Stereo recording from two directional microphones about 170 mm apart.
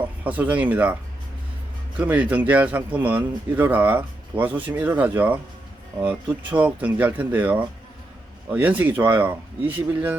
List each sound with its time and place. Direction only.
0.3 s speech: 10° right (ahead or behind)
2.0 s speech: 10° right (ahead or behind)